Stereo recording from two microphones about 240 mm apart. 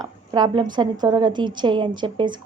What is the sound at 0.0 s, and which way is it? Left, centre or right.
A woman's voice, centre.